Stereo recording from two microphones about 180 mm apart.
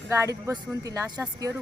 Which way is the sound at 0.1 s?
15° right (ahead or behind).